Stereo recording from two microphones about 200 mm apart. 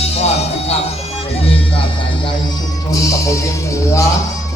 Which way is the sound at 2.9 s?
15° left (ahead or behind).